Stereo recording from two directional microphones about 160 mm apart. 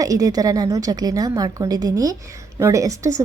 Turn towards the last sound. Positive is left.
turn(degrees=-20)  # may be behind; listen again after turning